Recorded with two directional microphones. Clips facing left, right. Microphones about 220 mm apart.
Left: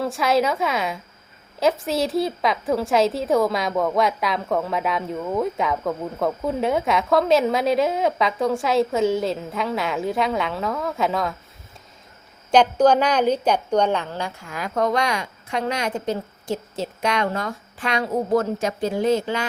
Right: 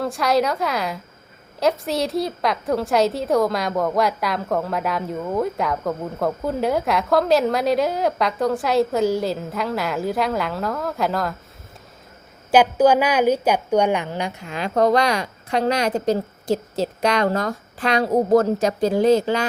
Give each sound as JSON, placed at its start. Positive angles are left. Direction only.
{"t": 0.0, "sound": "a woman's voice", "side_deg": 0}
{"t": 12.5, "sound": "a woman's voice", "side_deg": -5}